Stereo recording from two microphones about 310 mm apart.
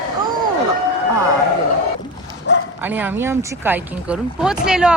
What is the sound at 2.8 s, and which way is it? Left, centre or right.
Speech, centre.